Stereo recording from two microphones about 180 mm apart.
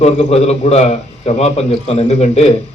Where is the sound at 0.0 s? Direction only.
35° left (ahead or behind).